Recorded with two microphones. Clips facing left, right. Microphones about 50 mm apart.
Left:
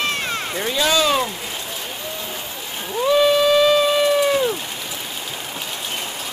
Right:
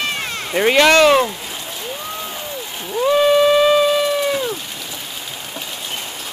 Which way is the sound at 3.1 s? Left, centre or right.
Centre.